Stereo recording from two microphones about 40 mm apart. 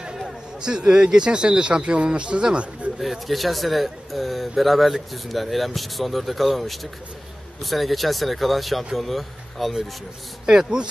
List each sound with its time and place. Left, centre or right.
0.6 s speech: centre
3.0 s speech: centre
10.4 s speech: centre